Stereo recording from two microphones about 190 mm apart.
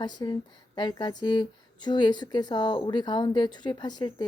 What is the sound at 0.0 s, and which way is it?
Speech, 20° left (ahead or behind).